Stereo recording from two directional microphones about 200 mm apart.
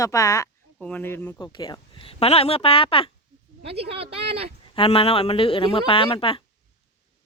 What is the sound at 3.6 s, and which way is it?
Speech, 30° right (ahead or behind).